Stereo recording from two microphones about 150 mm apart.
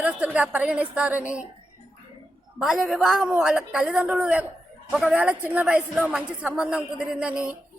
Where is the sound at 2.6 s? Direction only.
Centre (ahead or behind).